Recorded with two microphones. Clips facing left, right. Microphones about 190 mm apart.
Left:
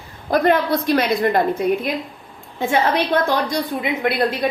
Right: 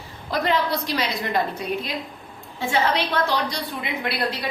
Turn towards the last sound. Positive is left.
turn(degrees=50)  # may be behind; listen again after turning